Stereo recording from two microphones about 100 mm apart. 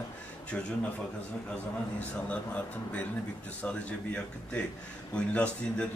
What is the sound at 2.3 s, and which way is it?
A man's voice, 15° left (ahead or behind).